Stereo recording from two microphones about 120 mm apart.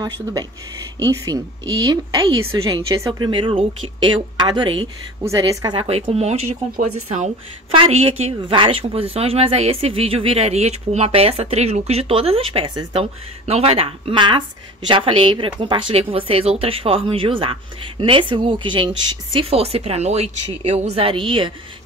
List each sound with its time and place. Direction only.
0.0 s a woman's voice: 35° right (ahead or behind)
3.2 s a woman's voice: 45° right (ahead or behind)
5.8 s speech: 55° right (ahead or behind); by 7.2 s 75° right (ahead or behind)
7.7 s speech: 50° right (ahead or behind)